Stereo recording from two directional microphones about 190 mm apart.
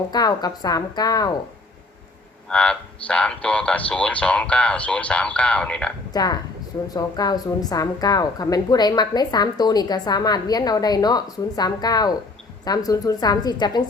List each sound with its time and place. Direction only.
0.1 s a woman's voice: 20° left (ahead or behind)
2.5 s speech: 5° left (ahead or behind)
6.1 s a woman's voice: 20° left (ahead or behind)